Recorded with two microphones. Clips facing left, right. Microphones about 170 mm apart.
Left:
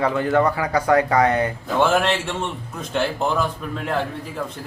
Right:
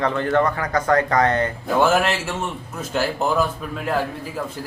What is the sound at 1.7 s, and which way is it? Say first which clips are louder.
A man's voice: even; 5° right (ahead or behind).